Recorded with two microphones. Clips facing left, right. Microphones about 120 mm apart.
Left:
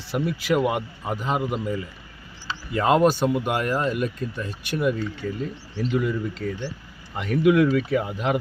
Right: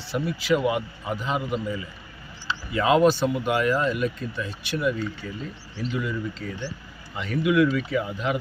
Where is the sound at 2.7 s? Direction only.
45° left (ahead or behind).